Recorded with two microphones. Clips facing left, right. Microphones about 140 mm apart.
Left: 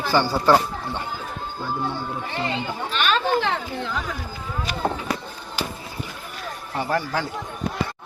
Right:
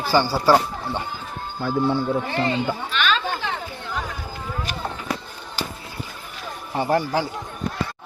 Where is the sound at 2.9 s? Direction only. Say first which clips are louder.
Left 2 dB; 40° left (ahead or behind).